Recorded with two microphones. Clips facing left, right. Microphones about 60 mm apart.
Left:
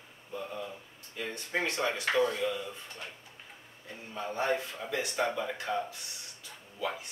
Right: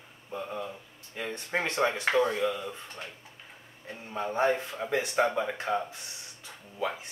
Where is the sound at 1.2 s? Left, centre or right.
Right.